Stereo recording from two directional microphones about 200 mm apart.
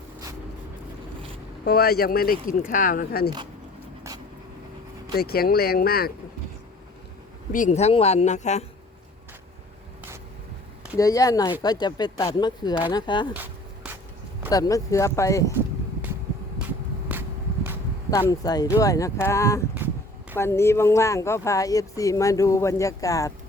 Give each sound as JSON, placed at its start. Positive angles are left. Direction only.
{"t": 1.6, "sound": "speech", "side_deg": 50}
{"t": 5.1, "sound": "speech", "side_deg": 50}
{"t": 7.5, "sound": "speech", "side_deg": 35}
{"t": 10.9, "sound": "speech", "side_deg": 15}
{"t": 13.3, "sound": "a sound", "side_deg": -10}
{"t": 14.5, "sound": "speech", "side_deg": 15}
{"t": 18.1, "sound": "speech", "side_deg": 15}